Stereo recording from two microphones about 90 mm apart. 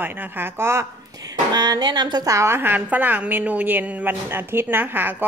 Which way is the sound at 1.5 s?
50° right (ahead or behind).